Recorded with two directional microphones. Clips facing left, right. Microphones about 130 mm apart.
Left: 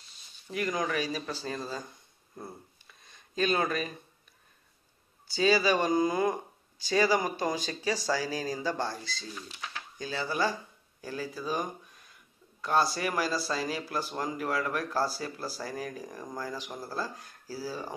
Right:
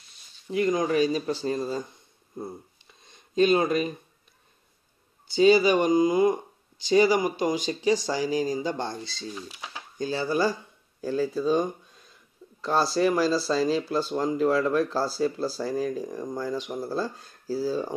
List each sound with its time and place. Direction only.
0.5 s speech: 25° right (ahead or behind)
2.3 s a sound: 25° right (ahead or behind)
5.3 s speech: 25° right (ahead or behind)